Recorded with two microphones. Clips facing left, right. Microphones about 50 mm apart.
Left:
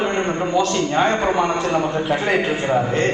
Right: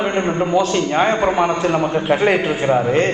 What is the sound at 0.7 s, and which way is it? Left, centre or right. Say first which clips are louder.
A man's voice: right 2 dB; right.